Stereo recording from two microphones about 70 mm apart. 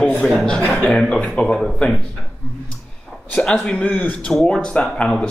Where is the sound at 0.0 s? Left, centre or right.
Centre.